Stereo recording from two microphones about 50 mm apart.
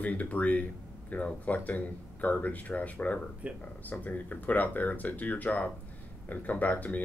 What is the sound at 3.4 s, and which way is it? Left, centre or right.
Speech, right.